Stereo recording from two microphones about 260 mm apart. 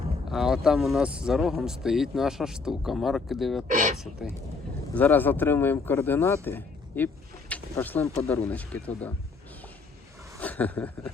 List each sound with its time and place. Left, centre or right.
0.3 s speech: centre
3.7 s speech: right
3.9 s speech: centre
10.4 s a sound: centre